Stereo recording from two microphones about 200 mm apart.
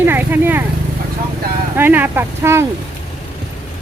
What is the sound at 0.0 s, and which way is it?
Speech, 10° right (ahead or behind).